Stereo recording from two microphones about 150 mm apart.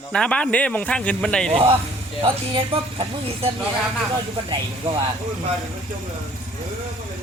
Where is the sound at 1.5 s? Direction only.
35° right (ahead or behind).